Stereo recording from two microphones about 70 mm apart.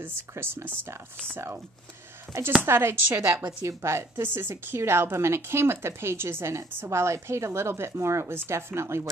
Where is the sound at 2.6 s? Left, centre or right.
Right.